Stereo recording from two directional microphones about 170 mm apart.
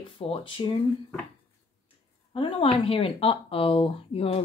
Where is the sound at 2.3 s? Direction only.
30° left (ahead or behind).